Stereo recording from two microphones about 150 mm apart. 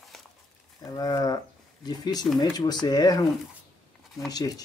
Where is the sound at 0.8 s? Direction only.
25° left (ahead or behind).